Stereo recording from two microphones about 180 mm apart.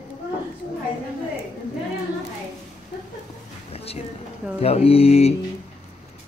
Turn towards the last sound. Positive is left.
turn(degrees=35)  # may be behind; listen again after turning